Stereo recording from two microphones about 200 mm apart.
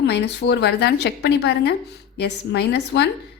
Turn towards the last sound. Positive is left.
turn(degrees=55)  # may be behind; listen again after turning